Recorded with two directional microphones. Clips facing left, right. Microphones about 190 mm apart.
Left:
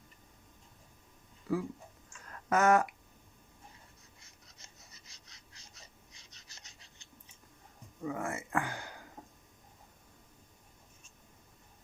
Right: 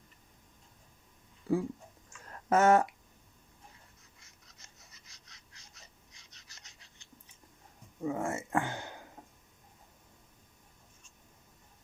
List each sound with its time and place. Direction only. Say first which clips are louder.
1.5 s speech: right 3 dB; 30° right (ahead or behind)
2.3 s a sound: right 2 dB; 25° right (ahead or behind)
8.0 s speech: right 3 dB; 25° right (ahead or behind)